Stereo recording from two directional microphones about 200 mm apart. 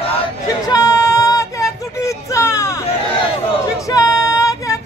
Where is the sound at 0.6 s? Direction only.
15° left (ahead or behind).